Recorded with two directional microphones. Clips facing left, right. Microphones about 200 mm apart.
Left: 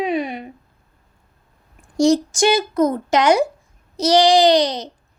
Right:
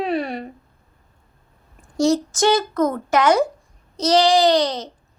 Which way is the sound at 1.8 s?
15° left (ahead or behind).